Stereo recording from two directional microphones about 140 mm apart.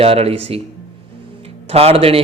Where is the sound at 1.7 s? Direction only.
45° right (ahead or behind).